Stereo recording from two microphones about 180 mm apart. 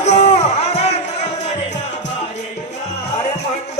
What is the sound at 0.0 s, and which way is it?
Music, 40° left (ahead or behind).